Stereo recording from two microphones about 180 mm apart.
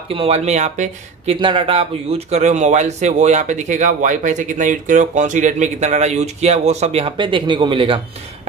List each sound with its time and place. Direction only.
0.1 s speech: 35° right (ahead or behind)